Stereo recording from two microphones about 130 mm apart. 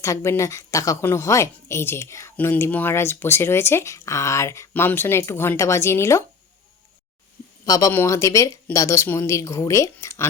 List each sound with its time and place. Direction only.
0.0 s a woman's voice: 20° left (ahead or behind)
7.6 s a woman's voice: 25° left (ahead or behind)